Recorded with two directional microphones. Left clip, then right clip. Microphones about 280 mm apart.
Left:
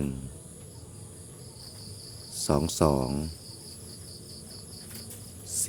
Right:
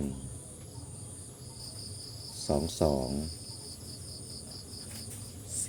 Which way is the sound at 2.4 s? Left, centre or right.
Left.